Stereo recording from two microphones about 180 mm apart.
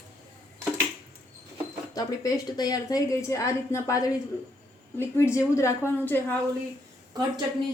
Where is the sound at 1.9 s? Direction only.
20° left (ahead or behind).